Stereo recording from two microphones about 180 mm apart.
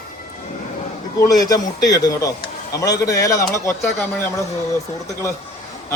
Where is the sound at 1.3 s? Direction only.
20° left (ahead or behind).